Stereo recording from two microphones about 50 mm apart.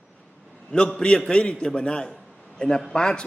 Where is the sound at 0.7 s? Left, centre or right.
Centre.